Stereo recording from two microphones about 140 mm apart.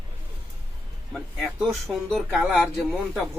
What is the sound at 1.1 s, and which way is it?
Speech, centre (ahead or behind).